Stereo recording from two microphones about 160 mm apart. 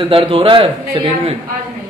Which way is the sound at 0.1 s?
35° right (ahead or behind).